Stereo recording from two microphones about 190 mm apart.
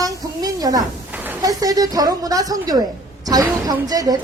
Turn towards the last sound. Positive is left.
turn(degrees=-20)  # may be behind; listen again after turning